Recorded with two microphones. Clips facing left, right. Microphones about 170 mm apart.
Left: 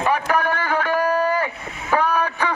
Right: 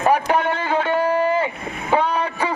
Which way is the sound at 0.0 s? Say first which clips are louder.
Right 3 dB; 30° right (ahead or behind).